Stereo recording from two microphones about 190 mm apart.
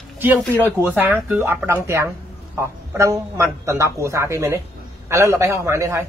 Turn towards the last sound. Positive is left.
turn(degrees=-15)  # may be behind; listen again after turning